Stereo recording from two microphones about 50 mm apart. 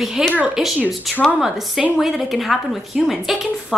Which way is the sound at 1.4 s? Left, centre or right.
Centre.